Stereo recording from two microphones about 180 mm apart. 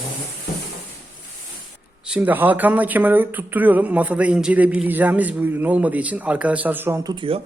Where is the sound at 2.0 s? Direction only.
5° right (ahead or behind); by 7.4 s 30° right (ahead or behind).